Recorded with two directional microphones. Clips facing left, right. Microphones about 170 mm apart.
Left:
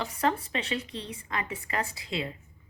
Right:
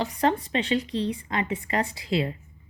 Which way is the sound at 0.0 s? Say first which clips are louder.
Right 4 dB; 30° right (ahead or behind).